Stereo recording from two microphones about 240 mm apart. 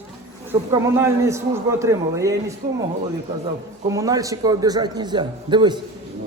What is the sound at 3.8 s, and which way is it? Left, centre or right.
A man's voice, centre.